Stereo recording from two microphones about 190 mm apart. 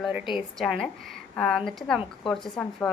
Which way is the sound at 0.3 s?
Centre (ahead or behind).